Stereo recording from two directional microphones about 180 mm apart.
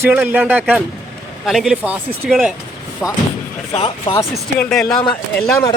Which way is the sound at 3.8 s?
25° left (ahead or behind).